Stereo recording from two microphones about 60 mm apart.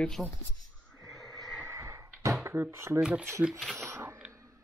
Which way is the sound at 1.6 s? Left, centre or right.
Right.